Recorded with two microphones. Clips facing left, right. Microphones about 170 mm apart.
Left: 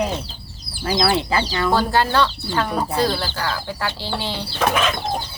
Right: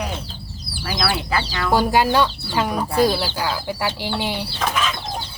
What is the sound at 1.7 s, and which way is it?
Speech, 15° right (ahead or behind).